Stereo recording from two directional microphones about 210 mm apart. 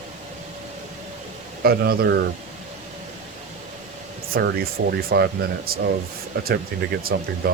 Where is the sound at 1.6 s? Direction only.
50° right (ahead or behind).